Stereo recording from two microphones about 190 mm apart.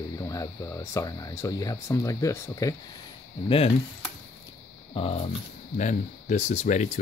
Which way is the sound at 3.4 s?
30° left (ahead or behind).